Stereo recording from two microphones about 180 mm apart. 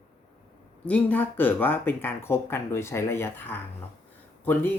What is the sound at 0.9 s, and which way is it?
Speech, 10° left (ahead or behind).